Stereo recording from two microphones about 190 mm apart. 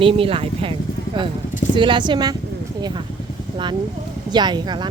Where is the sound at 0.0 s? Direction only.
30° right (ahead or behind).